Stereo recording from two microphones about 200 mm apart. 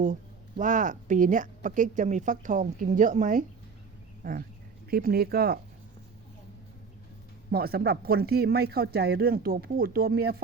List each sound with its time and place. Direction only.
0.0 s speech: 40° right (ahead or behind)
7.5 s speech: 50° right (ahead or behind)